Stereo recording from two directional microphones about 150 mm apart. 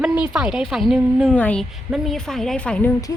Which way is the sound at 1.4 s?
10° left (ahead or behind).